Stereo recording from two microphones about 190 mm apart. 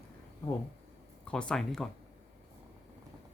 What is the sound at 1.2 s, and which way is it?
Speech, 5° left (ahead or behind).